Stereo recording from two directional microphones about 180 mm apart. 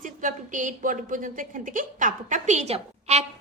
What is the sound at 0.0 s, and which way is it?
A woman's voice, 45° right (ahead or behind).